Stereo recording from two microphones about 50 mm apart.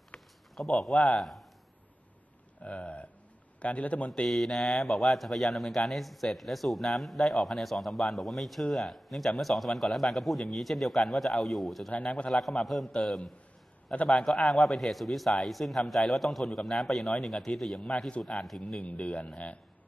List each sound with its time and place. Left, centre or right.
0.1 s a sound: left
0.6 s speech: centre
0.9 s speech: left
2.6 s speech: left
4.3 s speech: centre
12.0 s speech: left
12.3 s speech: centre
18.8 s speech: left